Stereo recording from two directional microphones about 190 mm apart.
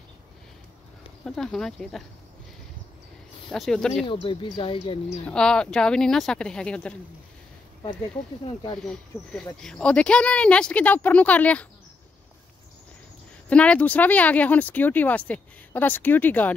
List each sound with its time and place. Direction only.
1.2 s speech: 5° left (ahead or behind)
3.4 s speech: centre (ahead or behind)
4.0 s speech: 25° left (ahead or behind)
5.2 s speech: 5° left (ahead or behind)
8.7 s speech: 5° left (ahead or behind)
13.5 s speech: 5° left (ahead or behind)